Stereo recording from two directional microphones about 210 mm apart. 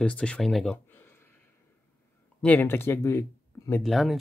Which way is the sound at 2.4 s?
5° left (ahead or behind).